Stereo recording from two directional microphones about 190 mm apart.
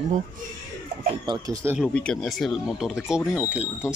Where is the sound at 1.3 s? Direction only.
20° right (ahead or behind).